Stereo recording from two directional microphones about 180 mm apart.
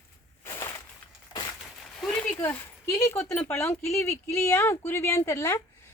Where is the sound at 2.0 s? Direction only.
5° left (ahead or behind).